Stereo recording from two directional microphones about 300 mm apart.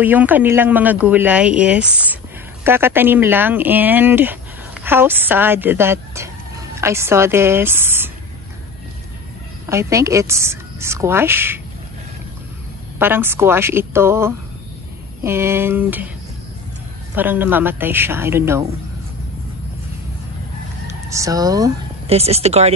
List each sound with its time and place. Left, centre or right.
0.0 s a woman's voice: centre
9.7 s a woman's voice: centre
13.0 s a woman's voice: centre
17.1 s a woman's voice: centre
21.1 s speech: centre